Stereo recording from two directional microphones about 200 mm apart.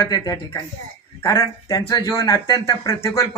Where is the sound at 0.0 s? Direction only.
20° left (ahead or behind).